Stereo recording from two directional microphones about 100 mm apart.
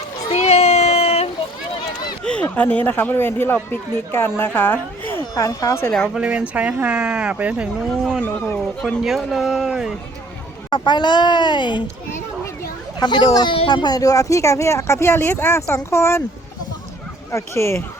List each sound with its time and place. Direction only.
0.3 s a sound: 90° left
2.2 s speech: 10° left (ahead or behind)
5.3 s speech: 35° left (ahead or behind)
6.1 s speech: 10° right (ahead or behind)
8.5 s speech: 5° left (ahead or behind)
10.7 s a child's voice: 50° left (ahead or behind)
13.0 s a child's voice: 45° left (ahead or behind); by 16.2 s 25° left (ahead or behind)
17.3 s speech: 25° left (ahead or behind)